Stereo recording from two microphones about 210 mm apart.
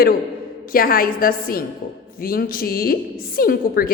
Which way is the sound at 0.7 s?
45° left (ahead or behind).